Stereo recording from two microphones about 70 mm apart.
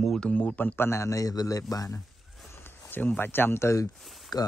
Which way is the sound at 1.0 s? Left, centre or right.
Left.